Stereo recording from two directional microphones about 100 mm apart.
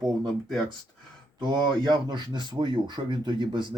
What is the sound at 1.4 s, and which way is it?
Speech, 50° right (ahead or behind).